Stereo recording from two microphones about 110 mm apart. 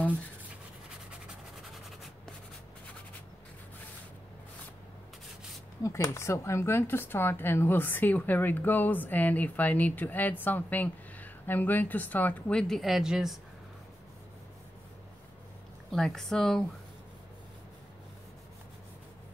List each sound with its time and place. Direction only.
5.8 s speech: 30° left (ahead or behind); by 13.4 s 5° right (ahead or behind)
15.9 s speech: 5° left (ahead or behind)